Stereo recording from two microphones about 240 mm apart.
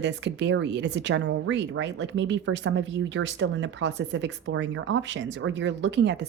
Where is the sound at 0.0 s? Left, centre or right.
Right.